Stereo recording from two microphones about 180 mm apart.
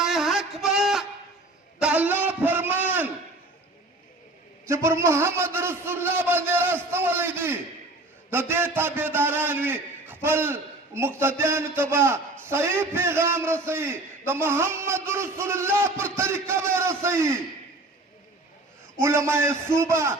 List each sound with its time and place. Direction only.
0.0 s a sound: centre (ahead or behind)
4.6 s a man's voice: 15° right (ahead or behind)
18.9 s a man's voice: 15° right (ahead or behind)